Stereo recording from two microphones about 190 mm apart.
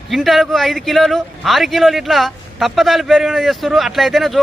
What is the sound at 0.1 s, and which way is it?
A man's voice, centre (ahead or behind).